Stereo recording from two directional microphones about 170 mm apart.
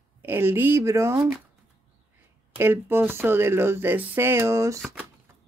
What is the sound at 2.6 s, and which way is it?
Speech, 15° right (ahead or behind).